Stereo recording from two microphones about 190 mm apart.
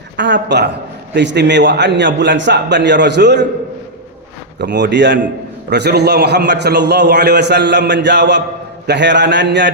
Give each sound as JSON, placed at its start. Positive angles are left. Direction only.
{"t": 0.2, "sound": "a man's voice", "side_deg": -65}
{"t": 4.6, "sound": "a man's voice", "side_deg": -65}